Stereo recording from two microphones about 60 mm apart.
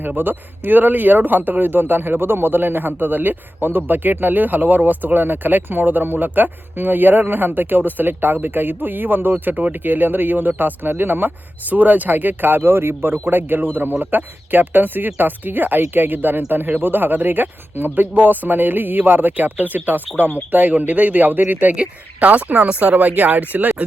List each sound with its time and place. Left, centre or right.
0.2 s speech: right